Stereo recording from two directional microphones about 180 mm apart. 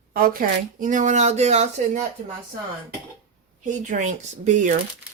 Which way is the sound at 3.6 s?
45° right (ahead or behind).